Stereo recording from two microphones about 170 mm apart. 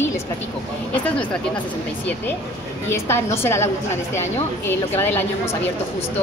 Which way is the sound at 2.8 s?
15° left (ahead or behind).